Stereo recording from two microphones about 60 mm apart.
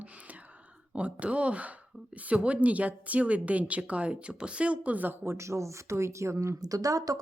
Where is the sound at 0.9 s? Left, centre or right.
Right.